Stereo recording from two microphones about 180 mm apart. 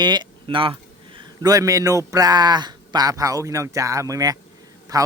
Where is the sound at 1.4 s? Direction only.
20° right (ahead or behind).